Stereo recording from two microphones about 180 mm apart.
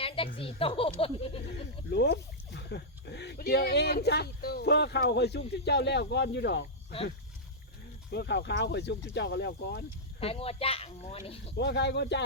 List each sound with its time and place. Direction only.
0.3 s speech: 30° left (ahead or behind)
1.5 s speech: 65° left (ahead or behind)
8.1 s speech: 65° left (ahead or behind)
10.2 s speech: 35° left (ahead or behind)
11.5 s speech: 70° left (ahead or behind)